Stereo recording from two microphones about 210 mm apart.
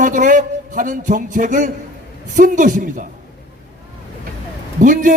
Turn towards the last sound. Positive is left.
turn(degrees=-40)  # may be behind; listen again after turning